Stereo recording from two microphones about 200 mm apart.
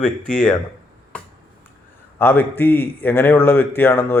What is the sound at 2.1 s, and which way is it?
A man's voice, 10° left (ahead or behind).